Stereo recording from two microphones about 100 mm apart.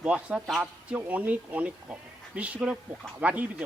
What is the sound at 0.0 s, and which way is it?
Speech, 10° right (ahead or behind).